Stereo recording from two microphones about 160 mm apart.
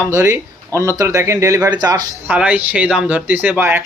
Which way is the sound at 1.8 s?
25° right (ahead or behind).